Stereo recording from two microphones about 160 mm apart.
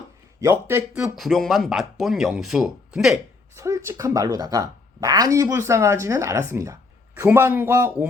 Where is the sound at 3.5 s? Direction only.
15° right (ahead or behind).